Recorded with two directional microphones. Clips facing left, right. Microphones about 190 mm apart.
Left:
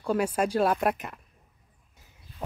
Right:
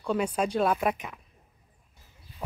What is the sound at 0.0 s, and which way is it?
Speech, 5° left (ahead or behind).